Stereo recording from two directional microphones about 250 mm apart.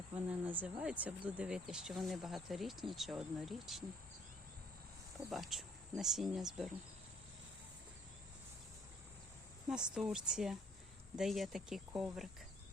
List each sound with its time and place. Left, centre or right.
0.3 s speech: centre
5.3 s speech: centre
9.6 s speech: centre